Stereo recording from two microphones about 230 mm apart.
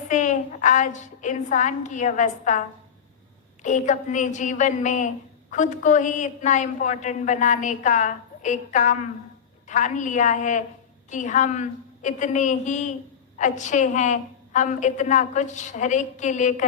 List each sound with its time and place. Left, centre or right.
0.1 s a woman's voice: left